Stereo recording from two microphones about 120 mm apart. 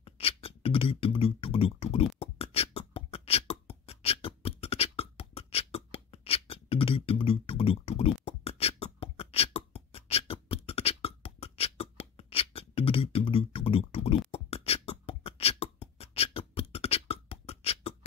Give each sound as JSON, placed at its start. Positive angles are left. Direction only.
{"t": 0.0, "sound": "beatboxing", "side_deg": 55}